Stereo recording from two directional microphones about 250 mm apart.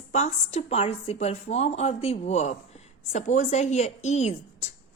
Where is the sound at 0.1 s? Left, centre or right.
Left.